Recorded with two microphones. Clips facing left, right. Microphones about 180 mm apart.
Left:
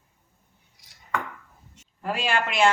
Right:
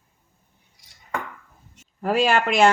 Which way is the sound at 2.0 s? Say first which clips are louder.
Right 7 dB; 40° right (ahead or behind).